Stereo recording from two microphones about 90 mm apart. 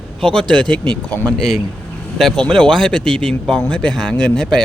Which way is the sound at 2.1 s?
5° left (ahead or behind).